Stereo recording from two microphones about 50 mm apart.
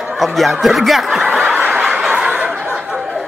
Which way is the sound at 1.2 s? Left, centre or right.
Right.